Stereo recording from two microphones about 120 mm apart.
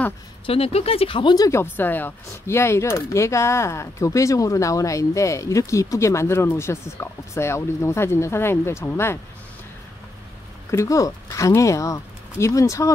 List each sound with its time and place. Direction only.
0.5 s speech: 55° left (ahead or behind); by 1.5 s 35° left (ahead or behind)
1.5 s speech: 20° left (ahead or behind)
10.7 s speech: 25° left (ahead or behind)